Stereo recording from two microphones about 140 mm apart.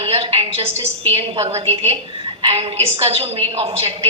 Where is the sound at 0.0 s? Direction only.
45° right (ahead or behind).